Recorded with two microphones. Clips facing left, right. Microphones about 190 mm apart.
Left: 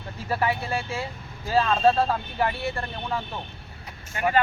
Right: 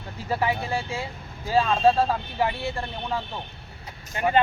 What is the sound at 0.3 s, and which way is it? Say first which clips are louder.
Speech: even; 15° right (ahead or behind).